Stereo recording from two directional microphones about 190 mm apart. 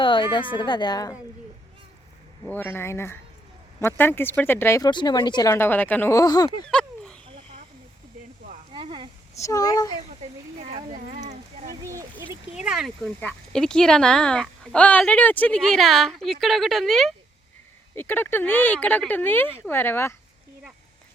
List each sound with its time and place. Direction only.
0.0 s a woman's voice: 25° left (ahead or behind)
2.5 s speech: 10° left (ahead or behind)
6.7 s a sound: 5° left (ahead or behind)
7.3 s a sound: 25° right (ahead or behind)
8.7 s a sound: 25° right (ahead or behind)
9.3 s speech: 15° left (ahead or behind)
10.6 s speech: 35° right (ahead or behind)
11.9 s speech: 15° right (ahead or behind)
12.5 s speech: 5° right (ahead or behind); by 20.1 s 10° left (ahead or behind)